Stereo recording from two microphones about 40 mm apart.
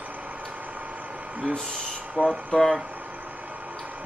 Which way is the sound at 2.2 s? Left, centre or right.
Right.